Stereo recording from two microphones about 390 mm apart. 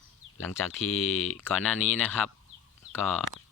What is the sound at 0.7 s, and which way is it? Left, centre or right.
Speech, left.